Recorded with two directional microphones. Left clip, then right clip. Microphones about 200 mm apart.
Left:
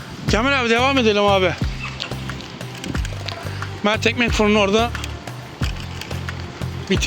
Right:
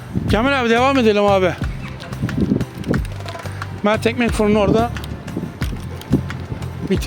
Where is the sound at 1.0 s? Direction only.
50° right (ahead or behind).